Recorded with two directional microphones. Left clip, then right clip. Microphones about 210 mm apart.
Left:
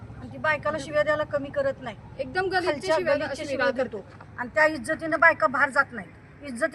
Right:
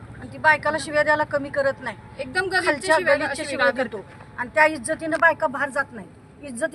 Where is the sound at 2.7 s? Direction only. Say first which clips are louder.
Right 5 dB; 15° right (ahead or behind).